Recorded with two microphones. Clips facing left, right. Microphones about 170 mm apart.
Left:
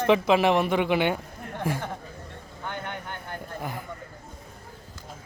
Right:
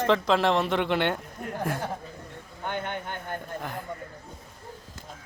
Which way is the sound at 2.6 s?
20° right (ahead or behind).